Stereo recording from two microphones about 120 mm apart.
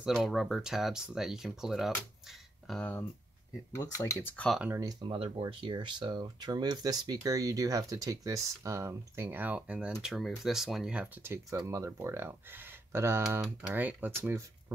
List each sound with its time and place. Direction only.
0.0 s speech: 5° right (ahead or behind)
3.7 s speech: 25° left (ahead or behind)
4.7 s speech: 30° right (ahead or behind)
5.1 s speech: 45° right (ahead or behind); by 11.1 s 5° right (ahead or behind)
11.5 s speech: 25° right (ahead or behind)